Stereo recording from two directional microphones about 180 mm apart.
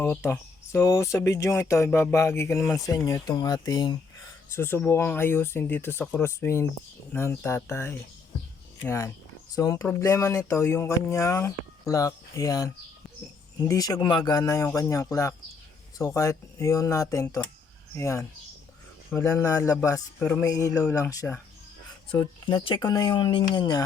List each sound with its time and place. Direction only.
0.0 s speech: 10° left (ahead or behind)
4.4 s speech: 15° left (ahead or behind)
22.2 s speech: 25° left (ahead or behind)